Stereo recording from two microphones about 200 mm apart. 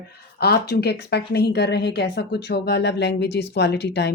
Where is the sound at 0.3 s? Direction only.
50° left (ahead or behind).